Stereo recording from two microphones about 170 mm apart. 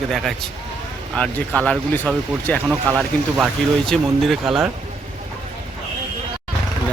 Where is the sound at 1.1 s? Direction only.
5° left (ahead or behind).